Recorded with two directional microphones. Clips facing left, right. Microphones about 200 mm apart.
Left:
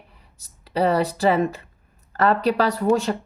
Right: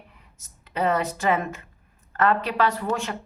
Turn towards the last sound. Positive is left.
turn(degrees=35)  # may be behind; listen again after turning